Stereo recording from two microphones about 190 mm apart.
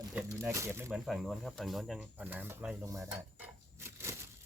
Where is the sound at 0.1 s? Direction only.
10° right (ahead or behind).